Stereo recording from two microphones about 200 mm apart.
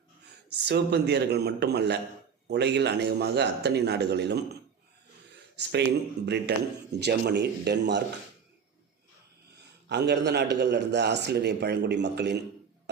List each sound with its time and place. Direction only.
0.6 s a man's voice: 55° right (ahead or behind)
5.6 s a man's voice: 55° right (ahead or behind)
9.9 s a man's voice: 60° right (ahead or behind)